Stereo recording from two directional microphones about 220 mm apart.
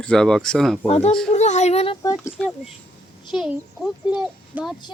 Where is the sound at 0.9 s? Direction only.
30° left (ahead or behind).